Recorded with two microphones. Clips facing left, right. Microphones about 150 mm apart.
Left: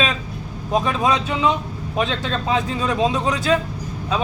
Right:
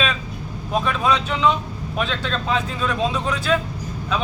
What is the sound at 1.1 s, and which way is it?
Speech, 15° left (ahead or behind).